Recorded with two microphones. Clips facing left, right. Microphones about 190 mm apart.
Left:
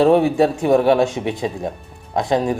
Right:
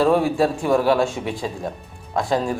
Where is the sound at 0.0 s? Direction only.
20° left (ahead or behind).